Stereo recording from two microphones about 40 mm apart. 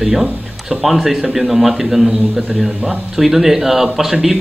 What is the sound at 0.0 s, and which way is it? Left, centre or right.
A man's voice, centre.